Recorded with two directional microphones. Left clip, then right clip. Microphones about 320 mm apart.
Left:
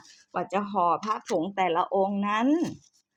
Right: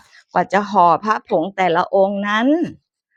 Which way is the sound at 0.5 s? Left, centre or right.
Right.